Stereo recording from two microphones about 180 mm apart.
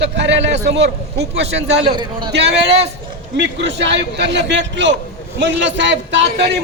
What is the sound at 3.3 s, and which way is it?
A man's voice, 75° right (ahead or behind).